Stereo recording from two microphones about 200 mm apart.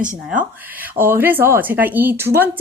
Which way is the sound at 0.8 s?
10° right (ahead or behind).